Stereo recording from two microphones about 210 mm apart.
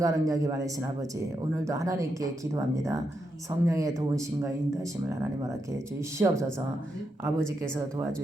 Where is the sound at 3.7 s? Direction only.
15° right (ahead or behind).